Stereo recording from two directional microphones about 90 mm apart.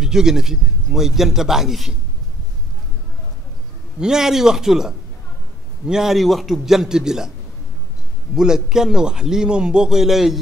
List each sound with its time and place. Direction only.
0.0 s a man's voice: 5° right (ahead or behind)
4.0 s a man's voice: 5° right (ahead or behind)
8.4 s a man's voice: 5° right (ahead or behind)